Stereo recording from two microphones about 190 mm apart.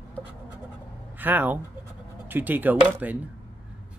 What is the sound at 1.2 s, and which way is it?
Speech, 10° right (ahead or behind).